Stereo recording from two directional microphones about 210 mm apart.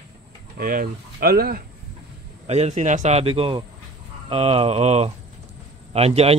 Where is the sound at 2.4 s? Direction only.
30° right (ahead or behind).